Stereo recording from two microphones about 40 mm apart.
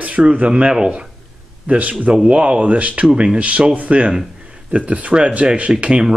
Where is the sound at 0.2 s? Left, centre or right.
Right.